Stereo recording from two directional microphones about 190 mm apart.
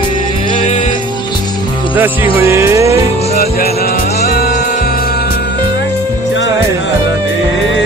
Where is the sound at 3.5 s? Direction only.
55° left (ahead or behind).